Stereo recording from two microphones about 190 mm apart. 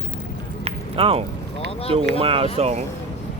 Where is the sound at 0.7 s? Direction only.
30° right (ahead or behind).